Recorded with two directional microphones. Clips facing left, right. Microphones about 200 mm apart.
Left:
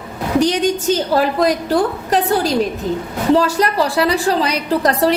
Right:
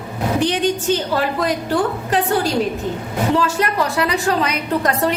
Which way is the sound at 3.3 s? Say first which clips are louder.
Left 3 dB; 35° left (ahead or behind).